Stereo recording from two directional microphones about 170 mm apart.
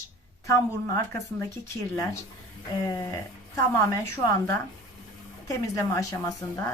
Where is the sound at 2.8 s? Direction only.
20° left (ahead or behind).